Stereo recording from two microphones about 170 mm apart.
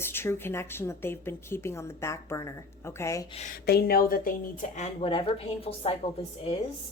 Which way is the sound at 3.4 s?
50° left (ahead or behind).